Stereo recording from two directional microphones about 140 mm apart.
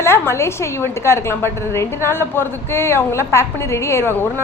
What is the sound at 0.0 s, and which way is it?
A woman's voice, 20° left (ahead or behind).